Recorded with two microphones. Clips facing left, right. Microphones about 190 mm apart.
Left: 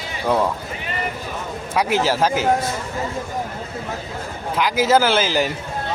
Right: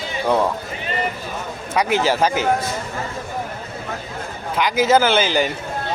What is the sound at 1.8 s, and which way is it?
Speech, centre (ahead or behind).